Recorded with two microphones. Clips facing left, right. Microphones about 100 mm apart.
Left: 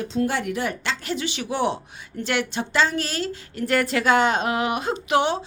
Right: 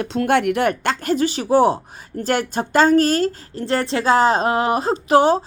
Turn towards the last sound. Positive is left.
turn(degrees=-40)  # may be behind; listen again after turning